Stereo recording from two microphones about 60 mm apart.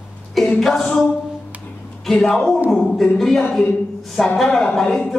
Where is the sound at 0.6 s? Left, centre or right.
Centre.